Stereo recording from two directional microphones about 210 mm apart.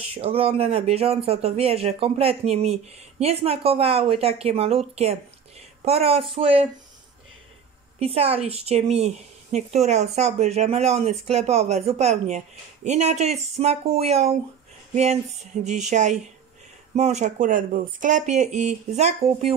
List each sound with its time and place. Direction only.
0.1 s speech: 25° right (ahead or behind)
8.0 s a woman's voice: 30° right (ahead or behind)
15.6 s a woman's voice: 35° right (ahead or behind)